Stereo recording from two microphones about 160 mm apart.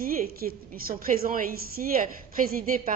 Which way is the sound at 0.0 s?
60° right (ahead or behind).